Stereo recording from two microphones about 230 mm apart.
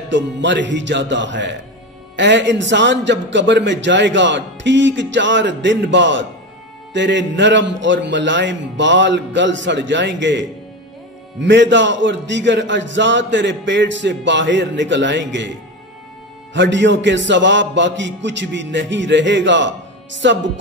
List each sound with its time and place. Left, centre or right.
0.1 s a man's voice: right
11.4 s a man's voice: right
16.5 s a man's voice: right